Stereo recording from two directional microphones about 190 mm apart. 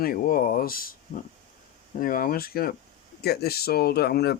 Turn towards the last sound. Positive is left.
turn(degrees=55)  # may be behind; listen again after turning